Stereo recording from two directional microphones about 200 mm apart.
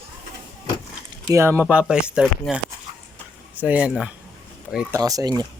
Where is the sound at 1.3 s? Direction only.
15° right (ahead or behind).